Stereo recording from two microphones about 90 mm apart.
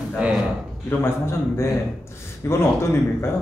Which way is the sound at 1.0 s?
30° left (ahead or behind).